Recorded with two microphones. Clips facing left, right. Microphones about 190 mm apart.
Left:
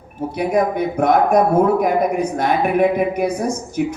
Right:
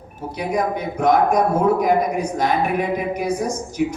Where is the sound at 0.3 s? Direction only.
55° left (ahead or behind).